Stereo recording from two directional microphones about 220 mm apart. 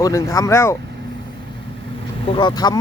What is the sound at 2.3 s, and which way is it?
Speech, 20° left (ahead or behind).